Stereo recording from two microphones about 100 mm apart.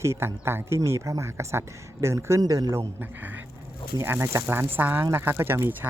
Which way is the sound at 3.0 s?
20° right (ahead or behind).